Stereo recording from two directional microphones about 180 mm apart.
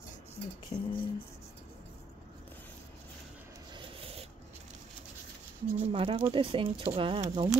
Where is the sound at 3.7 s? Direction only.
30° right (ahead or behind).